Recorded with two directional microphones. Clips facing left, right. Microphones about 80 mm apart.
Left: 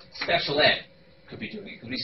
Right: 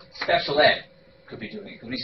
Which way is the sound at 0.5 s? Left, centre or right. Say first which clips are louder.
Right 4 dB; right.